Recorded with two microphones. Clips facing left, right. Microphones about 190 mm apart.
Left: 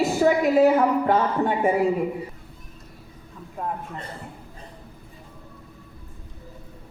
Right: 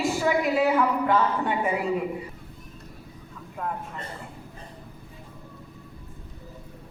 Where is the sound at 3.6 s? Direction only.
35° left (ahead or behind).